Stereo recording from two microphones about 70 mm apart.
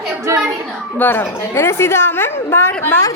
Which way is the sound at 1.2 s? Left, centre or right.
Left.